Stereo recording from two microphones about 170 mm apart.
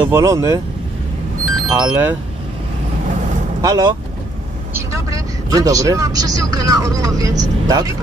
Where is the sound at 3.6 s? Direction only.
20° right (ahead or behind).